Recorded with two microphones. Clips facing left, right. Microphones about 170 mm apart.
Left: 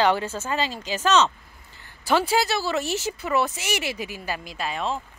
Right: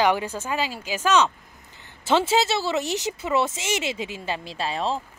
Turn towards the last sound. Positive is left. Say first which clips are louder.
# right 2 dB
turn(degrees=-30)  # may be behind; listen again after turning